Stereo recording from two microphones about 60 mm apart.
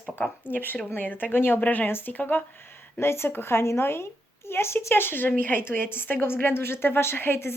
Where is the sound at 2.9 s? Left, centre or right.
Left.